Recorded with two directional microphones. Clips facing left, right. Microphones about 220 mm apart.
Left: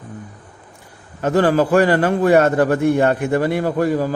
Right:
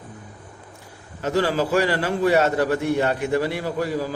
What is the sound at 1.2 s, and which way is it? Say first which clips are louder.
A man's voice: left 6 dB; 55° left (ahead or behind).